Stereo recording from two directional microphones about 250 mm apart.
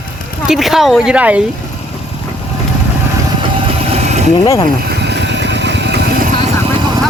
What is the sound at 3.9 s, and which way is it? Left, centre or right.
Vehicle, right.